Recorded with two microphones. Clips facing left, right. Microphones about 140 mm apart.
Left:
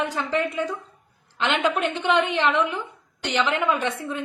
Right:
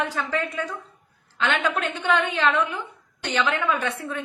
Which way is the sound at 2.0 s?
15° left (ahead or behind).